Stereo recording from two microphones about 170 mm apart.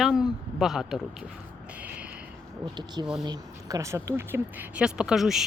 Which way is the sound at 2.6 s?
25° right (ahead or behind).